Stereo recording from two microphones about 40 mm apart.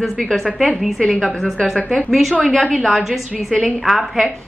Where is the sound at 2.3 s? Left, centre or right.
Centre.